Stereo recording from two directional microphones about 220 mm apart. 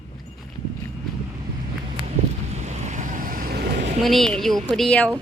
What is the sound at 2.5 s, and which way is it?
Vehicle, 30° right (ahead or behind).